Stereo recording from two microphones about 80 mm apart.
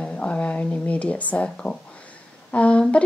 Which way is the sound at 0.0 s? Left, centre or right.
Centre.